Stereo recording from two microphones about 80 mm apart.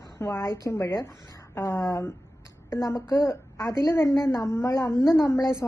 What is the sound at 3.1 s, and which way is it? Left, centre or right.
A woman's voice, left.